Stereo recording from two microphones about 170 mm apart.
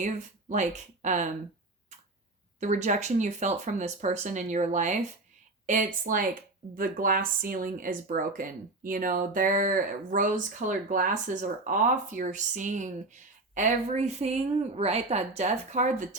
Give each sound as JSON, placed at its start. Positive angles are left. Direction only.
{"t": 0.0, "sound": "speech", "side_deg": -45}
{"t": 2.6, "sound": "speech", "side_deg": -45}